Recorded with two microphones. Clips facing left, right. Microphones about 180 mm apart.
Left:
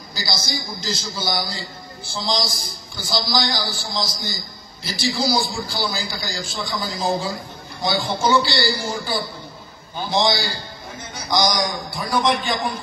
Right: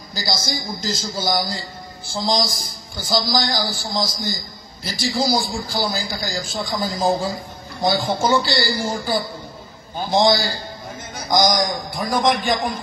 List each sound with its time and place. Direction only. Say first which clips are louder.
0.1 s a man's voice: right 2 dB; 45° right (ahead or behind)
3.1 s a man's voice: right 2 dB; 45° right (ahead or behind)